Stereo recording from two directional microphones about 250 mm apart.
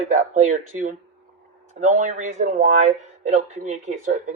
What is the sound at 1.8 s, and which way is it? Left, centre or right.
Speech, right.